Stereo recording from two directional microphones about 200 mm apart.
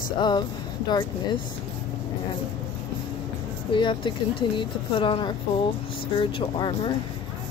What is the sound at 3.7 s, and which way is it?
A woman's voice, 25° left (ahead or behind).